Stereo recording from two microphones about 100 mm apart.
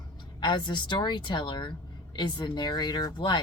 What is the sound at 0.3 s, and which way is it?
Speech, 50° left (ahead or behind).